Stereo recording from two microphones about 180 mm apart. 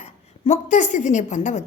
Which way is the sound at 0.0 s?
40° left (ahead or behind).